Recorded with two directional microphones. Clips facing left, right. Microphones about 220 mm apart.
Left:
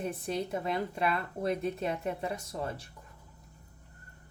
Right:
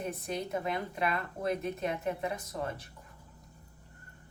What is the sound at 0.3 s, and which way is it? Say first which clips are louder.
A woman's voice: left 1 dB; 30° left (ahead or behind).